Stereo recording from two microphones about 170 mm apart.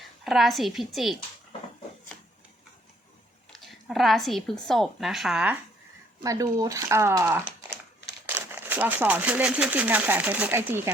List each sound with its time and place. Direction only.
0.0 s a woman's voice: centre (ahead or behind)
3.5 s a woman's voice: centre (ahead or behind)
6.2 s speech: 20° right (ahead or behind)